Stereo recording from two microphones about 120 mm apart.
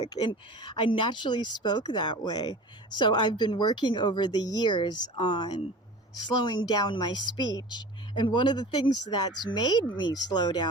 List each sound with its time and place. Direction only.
0.1 s a woman's voice: 40° left (ahead or behind)